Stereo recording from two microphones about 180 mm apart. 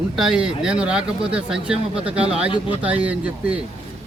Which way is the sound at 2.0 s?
35° right (ahead or behind).